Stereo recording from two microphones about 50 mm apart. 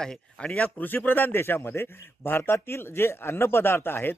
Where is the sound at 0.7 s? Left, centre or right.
Left.